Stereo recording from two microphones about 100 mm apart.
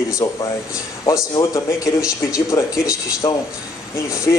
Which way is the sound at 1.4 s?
35° left (ahead or behind).